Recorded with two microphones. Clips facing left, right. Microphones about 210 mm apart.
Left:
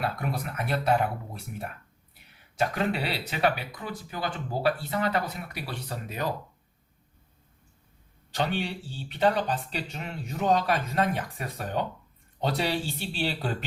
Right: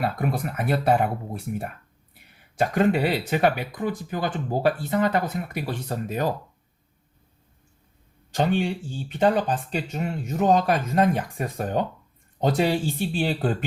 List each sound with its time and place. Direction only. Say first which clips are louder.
0.0 s speech: right 5 dB; 50° right (ahead or behind)
2.6 s speech: right 7 dB; 50° right (ahead or behind)
8.3 s speech: right 6 dB; 50° right (ahead or behind)